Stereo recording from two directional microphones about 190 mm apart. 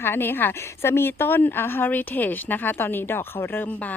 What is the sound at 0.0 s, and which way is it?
A woman's voice, 10° left (ahead or behind).